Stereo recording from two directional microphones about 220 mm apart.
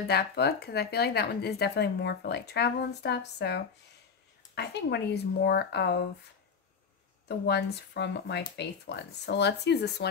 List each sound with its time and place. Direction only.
0.1 s speech: 45° left (ahead or behind)
7.2 s speech: 50° left (ahead or behind)